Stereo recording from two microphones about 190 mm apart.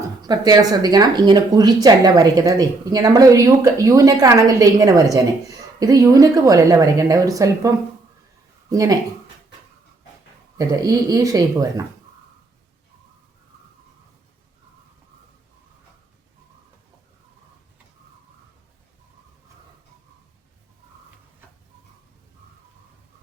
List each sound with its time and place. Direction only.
0.2 s speech: 20° right (ahead or behind)
8.7 s speech: 15° right (ahead or behind)
10.6 s speech: 20° right (ahead or behind)